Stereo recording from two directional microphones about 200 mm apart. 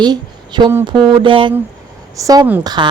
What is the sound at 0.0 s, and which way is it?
A woman's voice, 20° right (ahead or behind).